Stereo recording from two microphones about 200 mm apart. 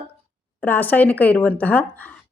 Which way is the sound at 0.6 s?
10° left (ahead or behind).